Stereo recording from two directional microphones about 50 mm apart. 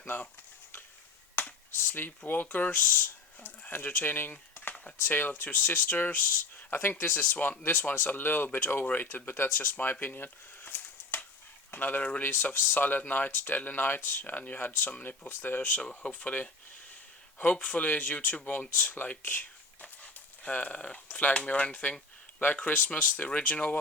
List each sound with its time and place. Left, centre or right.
0.0 s speech: left
1.4 s speech: left
4.7 s a sound: left
5.0 s speech: left
6.6 s a sound: left
7.0 s speech: left
10.2 s a sound: left
11.7 s speech: left
15.7 s speech: left
17.5 s speech: left
18.9 s a sound: left
21.2 s speech: left